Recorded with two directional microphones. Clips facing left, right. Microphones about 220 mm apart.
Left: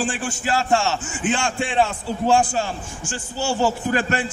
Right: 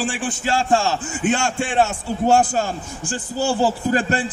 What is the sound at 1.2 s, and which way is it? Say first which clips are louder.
A man's voice: right 2 dB; 45° right (ahead or behind).